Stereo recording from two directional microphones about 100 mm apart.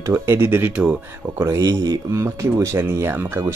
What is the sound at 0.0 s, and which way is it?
Speech, 25° right (ahead or behind).